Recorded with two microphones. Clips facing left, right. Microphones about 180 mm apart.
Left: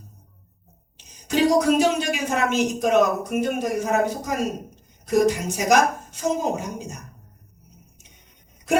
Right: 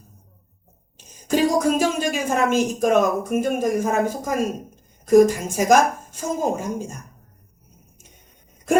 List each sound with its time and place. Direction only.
0.9 s a woman's voice: 50° right (ahead or behind)